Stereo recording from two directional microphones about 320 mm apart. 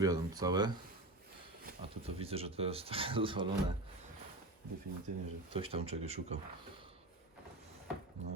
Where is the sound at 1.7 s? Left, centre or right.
Right.